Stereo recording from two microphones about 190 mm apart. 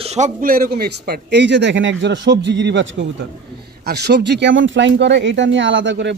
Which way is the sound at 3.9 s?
60° right (ahead or behind).